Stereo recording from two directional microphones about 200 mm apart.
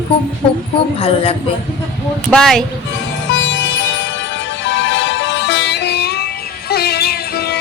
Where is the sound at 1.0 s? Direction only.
30° left (ahead or behind).